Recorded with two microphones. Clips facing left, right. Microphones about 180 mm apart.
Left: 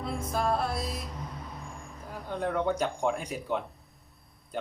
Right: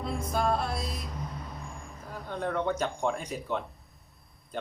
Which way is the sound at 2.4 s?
5° left (ahead or behind).